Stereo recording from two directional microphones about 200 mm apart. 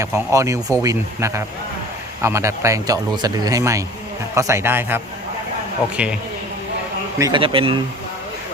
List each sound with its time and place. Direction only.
0.0 s speech: 15° right (ahead or behind)
6.0 s speech: 5° right (ahead or behind)
7.2 s speech: 20° right (ahead or behind)